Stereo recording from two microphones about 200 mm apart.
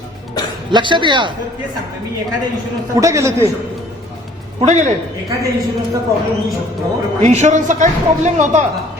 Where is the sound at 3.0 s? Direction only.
15° right (ahead or behind).